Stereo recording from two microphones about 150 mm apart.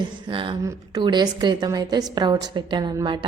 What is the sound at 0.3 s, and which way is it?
A woman's voice, 35° right (ahead or behind).